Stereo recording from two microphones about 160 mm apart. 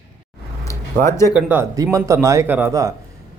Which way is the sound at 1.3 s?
15° right (ahead or behind).